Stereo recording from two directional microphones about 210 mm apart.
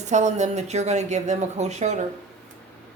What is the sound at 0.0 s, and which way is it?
Speech, 35° right (ahead or behind).